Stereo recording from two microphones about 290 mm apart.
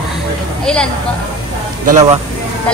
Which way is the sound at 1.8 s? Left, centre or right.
Right.